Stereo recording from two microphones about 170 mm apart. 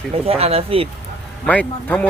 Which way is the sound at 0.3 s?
35° right (ahead or behind).